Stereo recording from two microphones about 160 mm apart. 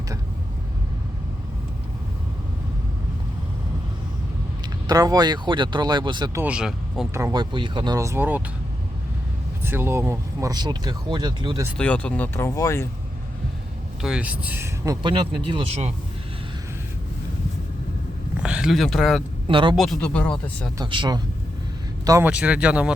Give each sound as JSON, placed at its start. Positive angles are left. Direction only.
{"t": 4.6, "sound": "speech", "side_deg": -25}
{"t": 6.4, "sound": "speech", "side_deg": -5}
{"t": 7.1, "sound": "speech", "side_deg": -20}
{"t": 9.6, "sound": "speech", "side_deg": -15}
{"t": 11.8, "sound": "speech", "side_deg": 10}
{"t": 14.0, "sound": "speech", "side_deg": -5}
{"t": 15.0, "sound": "speech", "side_deg": -35}
{"t": 18.4, "sound": "speech", "side_deg": -5}
{"t": 19.5, "sound": "speech", "side_deg": -30}
{"t": 19.7, "sound": "speech", "side_deg": 0}
{"t": 20.7, "sound": "speech", "side_deg": -30}
{"t": 22.3, "sound": "speech", "side_deg": -5}